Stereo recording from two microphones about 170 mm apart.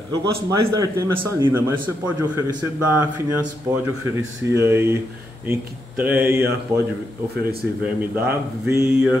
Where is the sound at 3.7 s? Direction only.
15° right (ahead or behind).